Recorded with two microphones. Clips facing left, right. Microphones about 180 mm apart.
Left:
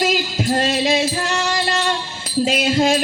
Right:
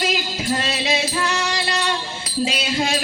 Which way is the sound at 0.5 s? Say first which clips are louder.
Left 5 dB; 45° left (ahead or behind).